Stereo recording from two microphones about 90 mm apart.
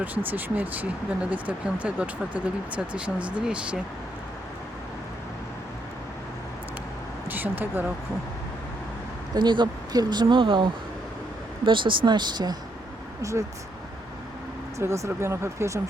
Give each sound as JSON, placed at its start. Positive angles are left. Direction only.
{"t": 0.0, "sound": "speech", "side_deg": -20}
{"t": 7.3, "sound": "speech", "side_deg": -20}
{"t": 9.3, "sound": "speech", "side_deg": -60}
{"t": 14.8, "sound": "speech", "side_deg": -35}